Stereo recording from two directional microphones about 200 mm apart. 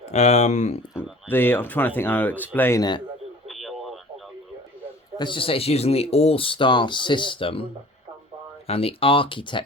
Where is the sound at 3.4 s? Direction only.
Centre (ahead or behind).